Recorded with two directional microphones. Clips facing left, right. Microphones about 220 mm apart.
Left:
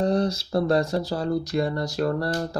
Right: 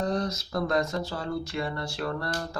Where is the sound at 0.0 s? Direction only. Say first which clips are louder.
Left 6 dB; 30° left (ahead or behind).